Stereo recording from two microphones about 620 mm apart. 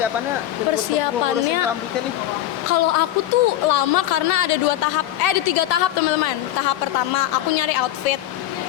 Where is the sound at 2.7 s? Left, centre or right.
Left.